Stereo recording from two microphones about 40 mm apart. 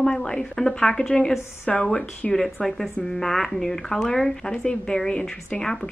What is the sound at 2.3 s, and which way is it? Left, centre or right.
A woman's voice, centre.